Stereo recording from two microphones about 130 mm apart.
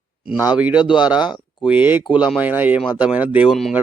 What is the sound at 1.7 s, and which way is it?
Speech, 15° right (ahead or behind).